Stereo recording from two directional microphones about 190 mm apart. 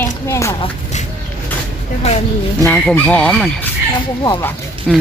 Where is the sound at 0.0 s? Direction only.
15° left (ahead or behind).